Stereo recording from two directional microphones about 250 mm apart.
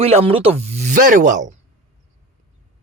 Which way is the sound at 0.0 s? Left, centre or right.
Right.